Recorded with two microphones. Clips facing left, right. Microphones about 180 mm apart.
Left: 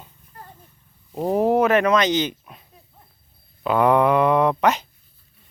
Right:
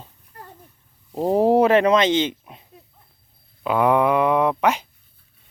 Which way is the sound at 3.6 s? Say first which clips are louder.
Left 1 dB; 5° right (ahead or behind).